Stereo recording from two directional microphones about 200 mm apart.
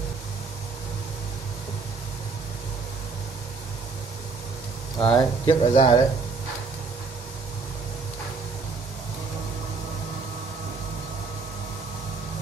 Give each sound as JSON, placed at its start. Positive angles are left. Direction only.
{"t": 5.0, "sound": "speech", "side_deg": 25}